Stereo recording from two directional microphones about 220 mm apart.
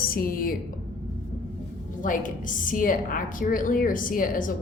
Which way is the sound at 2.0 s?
35° left (ahead or behind).